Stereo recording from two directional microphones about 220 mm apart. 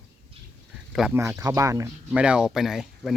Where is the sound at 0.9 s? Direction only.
5° right (ahead or behind).